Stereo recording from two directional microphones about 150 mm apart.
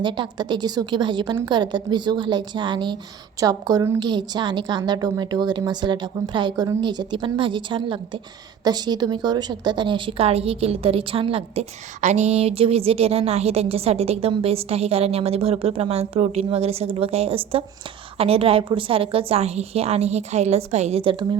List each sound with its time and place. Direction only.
0.0 s a woman's voice: 30° right (ahead or behind)